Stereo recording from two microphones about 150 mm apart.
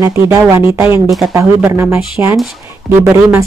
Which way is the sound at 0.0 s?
20° right (ahead or behind).